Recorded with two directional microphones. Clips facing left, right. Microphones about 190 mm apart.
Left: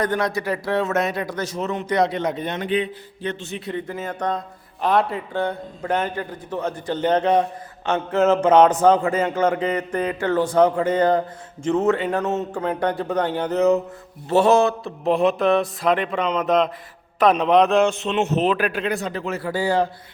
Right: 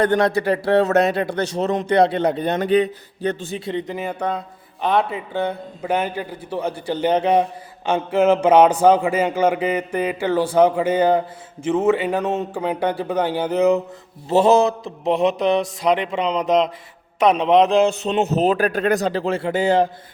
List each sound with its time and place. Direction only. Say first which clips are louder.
0.0 s a man's voice: right 5 dB; 30° right (ahead or behind)
3.7 s speech: right 3 dB; 15° right (ahead or behind)
14.4 s mantra: right 2 dB; 20° right (ahead or behind)
17.8 s a man's voice: right 2 dB; 35° right (ahead or behind)